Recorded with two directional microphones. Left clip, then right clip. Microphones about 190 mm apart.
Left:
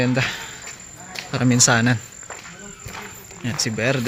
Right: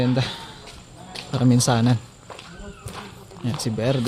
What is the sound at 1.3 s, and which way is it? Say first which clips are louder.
Speech: left 3 dB; 5° right (ahead or behind).